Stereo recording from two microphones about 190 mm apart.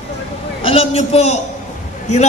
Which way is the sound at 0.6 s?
30° left (ahead or behind).